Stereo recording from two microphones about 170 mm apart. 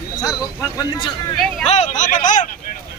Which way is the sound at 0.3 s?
25° left (ahead or behind).